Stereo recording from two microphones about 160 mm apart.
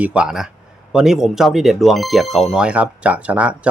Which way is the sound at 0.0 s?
5° right (ahead or behind).